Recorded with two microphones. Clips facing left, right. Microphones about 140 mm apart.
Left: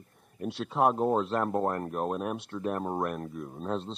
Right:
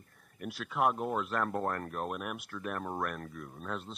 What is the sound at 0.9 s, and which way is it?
Speech, 30° left (ahead or behind).